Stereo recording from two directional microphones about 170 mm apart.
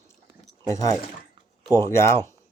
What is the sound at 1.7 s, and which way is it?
Speech, 15° left (ahead or behind).